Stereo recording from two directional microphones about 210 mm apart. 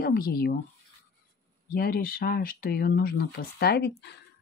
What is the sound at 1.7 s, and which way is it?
Speech, 45° left (ahead or behind).